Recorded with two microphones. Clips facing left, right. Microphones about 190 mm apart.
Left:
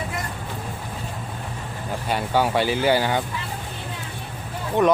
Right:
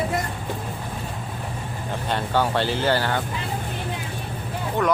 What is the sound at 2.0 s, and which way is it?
Speech, 10° left (ahead or behind).